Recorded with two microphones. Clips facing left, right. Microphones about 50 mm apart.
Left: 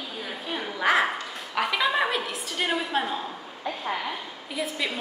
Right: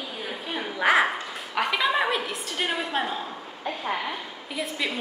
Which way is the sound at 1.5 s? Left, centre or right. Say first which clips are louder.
Even; centre.